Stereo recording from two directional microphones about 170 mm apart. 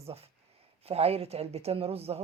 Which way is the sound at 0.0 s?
35° right (ahead or behind).